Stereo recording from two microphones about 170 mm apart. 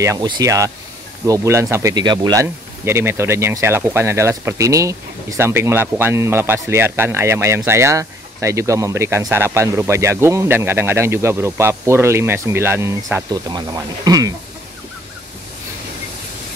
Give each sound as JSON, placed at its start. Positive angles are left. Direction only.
{"t": 0.0, "sound": "speech", "side_deg": -20}
{"t": 2.4, "sound": "speech", "side_deg": -15}